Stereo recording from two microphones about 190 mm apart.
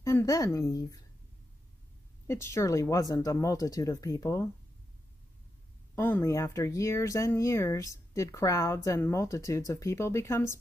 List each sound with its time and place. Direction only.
0.0 s a woman's voice: 15° left (ahead or behind)
2.2 s speech: 15° left (ahead or behind)
5.9 s speech: 10° left (ahead or behind)